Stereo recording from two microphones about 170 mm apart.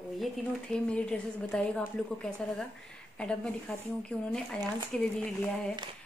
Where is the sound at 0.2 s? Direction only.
5° left (ahead or behind).